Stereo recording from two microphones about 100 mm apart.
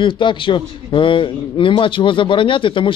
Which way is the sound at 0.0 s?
55° left (ahead or behind).